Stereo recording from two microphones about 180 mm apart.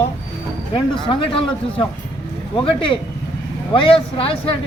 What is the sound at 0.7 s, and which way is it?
Speech, 30° left (ahead or behind).